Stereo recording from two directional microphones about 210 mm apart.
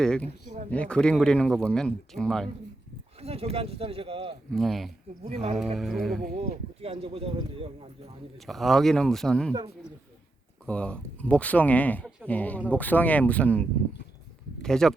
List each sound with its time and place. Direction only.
0.0 s speech: 5° left (ahead or behind)
3.2 s speech: 30° right (ahead or behind)
4.5 s speech: centre (ahead or behind)
5.2 s speech: 30° right (ahead or behind)
5.7 s speech: centre (ahead or behind)
6.2 s speech: 30° right (ahead or behind)
8.4 s speech: centre (ahead or behind)
10.7 s speech: 5° left (ahead or behind)